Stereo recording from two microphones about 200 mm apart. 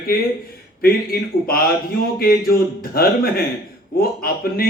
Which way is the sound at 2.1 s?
50° left (ahead or behind).